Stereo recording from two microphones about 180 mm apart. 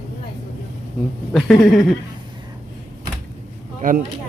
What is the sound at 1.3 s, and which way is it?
Speech, centre (ahead or behind).